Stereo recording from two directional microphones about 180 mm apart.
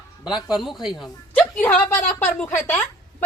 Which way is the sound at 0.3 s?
25° left (ahead or behind).